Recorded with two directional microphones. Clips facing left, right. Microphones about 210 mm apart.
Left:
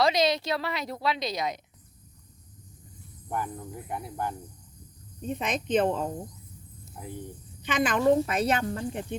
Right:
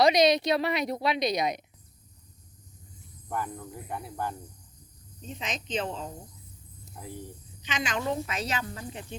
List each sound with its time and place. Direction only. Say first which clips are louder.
0.0 s a woman's voice: right 3 dB; 15° right (ahead or behind)
3.2 s speech: left 1 dB; 15° left (ahead or behind)
5.2 s speech: left 7 dB; 55° left (ahead or behind)
7.6 s speech: left 7 dB; 55° left (ahead or behind)